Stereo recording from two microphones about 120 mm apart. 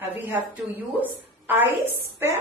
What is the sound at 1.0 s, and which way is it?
A woman's voice, 15° right (ahead or behind).